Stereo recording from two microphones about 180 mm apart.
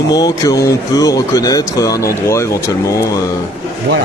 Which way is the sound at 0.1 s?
20° left (ahead or behind).